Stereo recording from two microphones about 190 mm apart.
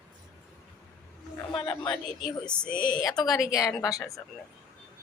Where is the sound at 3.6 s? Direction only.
20° left (ahead or behind).